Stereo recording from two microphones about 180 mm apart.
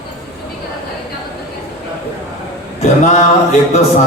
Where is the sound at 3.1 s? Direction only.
40° left (ahead or behind).